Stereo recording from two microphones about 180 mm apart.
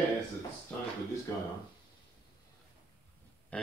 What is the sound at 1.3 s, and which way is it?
Speech, 15° left (ahead or behind).